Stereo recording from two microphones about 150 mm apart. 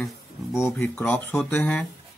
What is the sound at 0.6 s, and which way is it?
Speech, 15° left (ahead or behind).